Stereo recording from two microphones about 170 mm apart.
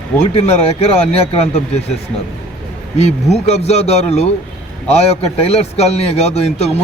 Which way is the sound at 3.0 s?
40° left (ahead or behind).